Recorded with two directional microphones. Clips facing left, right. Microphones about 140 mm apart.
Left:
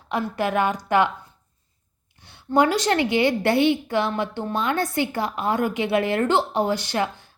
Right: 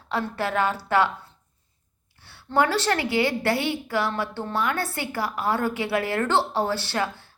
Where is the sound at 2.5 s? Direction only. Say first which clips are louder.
Left 3 dB; 15° left (ahead or behind).